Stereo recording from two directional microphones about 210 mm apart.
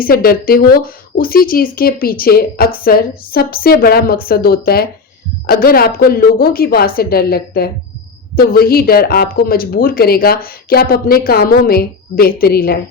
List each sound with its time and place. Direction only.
0.0 s speech: 45° left (ahead or behind)